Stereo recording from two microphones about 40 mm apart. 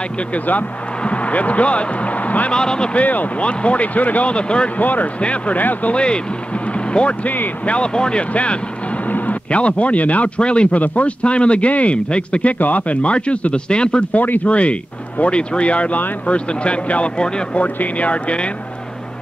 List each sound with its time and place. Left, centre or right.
0.3 s speech: left
2.5 s speech: left
2.9 s a man's voice: left
4.3 s speech: left
4.7 s a man's voice: left
5.6 s speech: left
5.9 s speech: left
6.7 s vehicle: left
7.6 s a man's voice: left
12.5 s a man's voice: left
14.1 s speech: left
14.5 s a man's voice: left